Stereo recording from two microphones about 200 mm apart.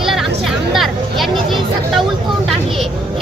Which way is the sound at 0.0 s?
Centre (ahead or behind).